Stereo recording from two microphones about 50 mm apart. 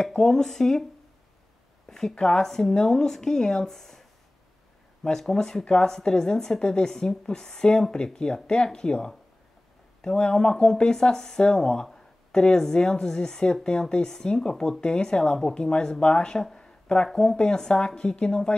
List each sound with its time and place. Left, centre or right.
0.0 s speech: centre
1.9 s speech: centre
5.0 s a woman's voice: centre